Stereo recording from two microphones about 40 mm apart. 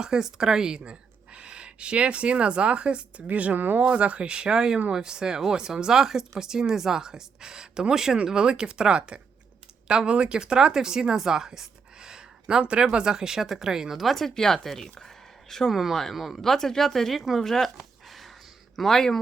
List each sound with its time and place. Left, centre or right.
0.0 s speech: centre; by 3.8 s right
3.8 s speech: right; by 14.0 s centre
14.0 s speech: centre
15.7 s speech: centre
16.4 s speech: centre
18.8 s speech: centre